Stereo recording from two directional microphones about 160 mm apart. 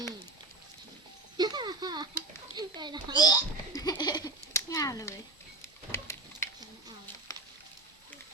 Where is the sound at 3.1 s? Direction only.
25° left (ahead or behind).